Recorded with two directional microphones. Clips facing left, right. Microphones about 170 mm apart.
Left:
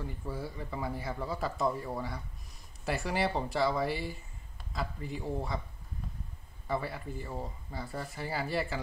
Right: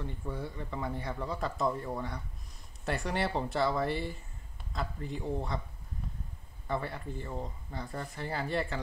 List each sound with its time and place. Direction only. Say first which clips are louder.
0.0 s speech: even; 5° left (ahead or behind)
6.7 s speech: even; 5° left (ahead or behind)